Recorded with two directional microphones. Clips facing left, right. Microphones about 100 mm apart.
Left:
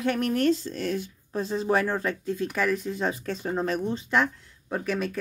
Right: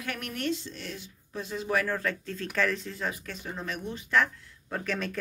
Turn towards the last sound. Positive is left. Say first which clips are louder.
# left 4 dB
turn(degrees=5)  # may be behind; listen again after turning